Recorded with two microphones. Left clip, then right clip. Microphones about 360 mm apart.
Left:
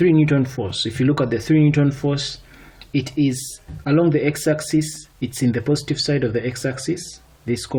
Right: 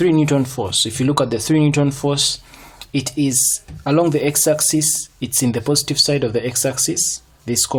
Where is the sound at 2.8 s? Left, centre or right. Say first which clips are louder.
Right 1 dB; right.